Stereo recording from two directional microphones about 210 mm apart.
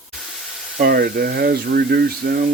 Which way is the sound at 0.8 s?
45° right (ahead or behind).